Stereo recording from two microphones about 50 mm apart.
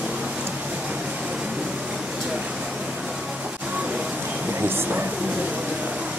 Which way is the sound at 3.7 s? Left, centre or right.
Right.